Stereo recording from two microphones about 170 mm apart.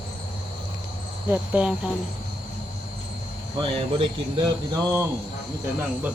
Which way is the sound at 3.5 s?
30° right (ahead or behind).